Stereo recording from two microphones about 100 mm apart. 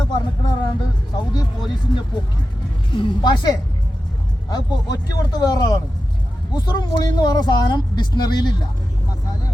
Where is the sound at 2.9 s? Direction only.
50° left (ahead or behind).